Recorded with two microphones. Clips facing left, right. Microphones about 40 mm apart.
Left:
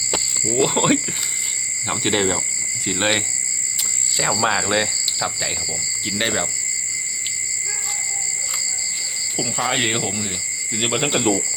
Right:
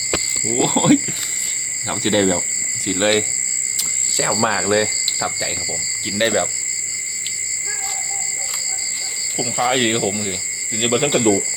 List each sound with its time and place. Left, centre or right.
0.7 s speech: centre
1.9 s speech: centre
4.4 s speech: left
4.7 s cricket: left
6.1 s speech: centre
9.4 s speech: centre